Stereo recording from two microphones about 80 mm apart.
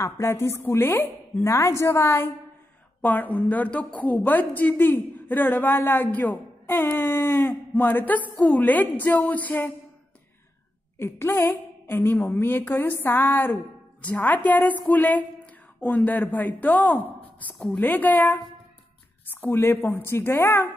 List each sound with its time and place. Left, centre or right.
0.0 s speech: left
3.0 s a woman's voice: left
11.0 s a woman's voice: left
19.4 s speech: left